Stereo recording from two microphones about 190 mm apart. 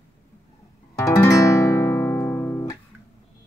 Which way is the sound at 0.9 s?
15° left (ahead or behind).